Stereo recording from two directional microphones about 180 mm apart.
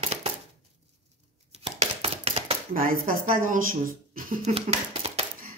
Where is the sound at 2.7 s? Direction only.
50° right (ahead or behind).